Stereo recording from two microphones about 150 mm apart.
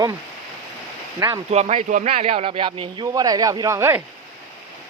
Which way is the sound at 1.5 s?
45° right (ahead or behind).